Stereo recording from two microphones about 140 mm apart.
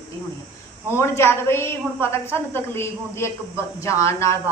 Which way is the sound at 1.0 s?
20° left (ahead or behind).